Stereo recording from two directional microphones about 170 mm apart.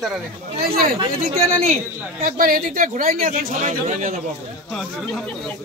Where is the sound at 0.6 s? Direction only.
60° right (ahead or behind).